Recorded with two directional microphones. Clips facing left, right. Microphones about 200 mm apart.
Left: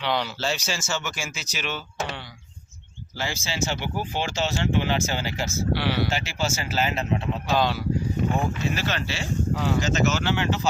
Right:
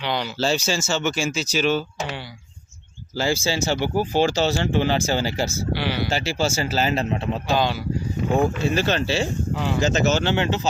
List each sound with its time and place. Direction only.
0.0 s speech: centre (ahead or behind)
0.3 s speech: 30° right (ahead or behind)
3.2 s speech: 35° right (ahead or behind)
5.7 s speech: centre (ahead or behind)
6.1 s speech: 35° right (ahead or behind)
7.5 s speech: centre (ahead or behind)
8.7 s speech: 30° right (ahead or behind)